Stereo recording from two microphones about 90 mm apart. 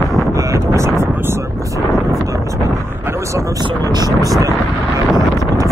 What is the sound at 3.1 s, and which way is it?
Vehicle, 35° right (ahead or behind).